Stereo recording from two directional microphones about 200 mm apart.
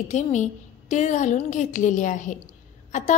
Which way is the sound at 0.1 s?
35° left (ahead or behind).